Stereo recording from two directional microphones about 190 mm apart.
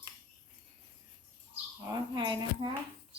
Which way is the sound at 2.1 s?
25° right (ahead or behind).